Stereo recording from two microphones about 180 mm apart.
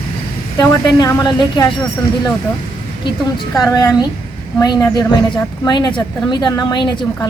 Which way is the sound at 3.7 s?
15° left (ahead or behind).